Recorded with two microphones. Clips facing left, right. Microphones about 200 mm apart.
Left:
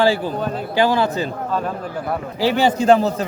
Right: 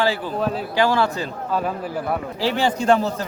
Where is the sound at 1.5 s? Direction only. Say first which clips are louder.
Even; 10° right (ahead or behind).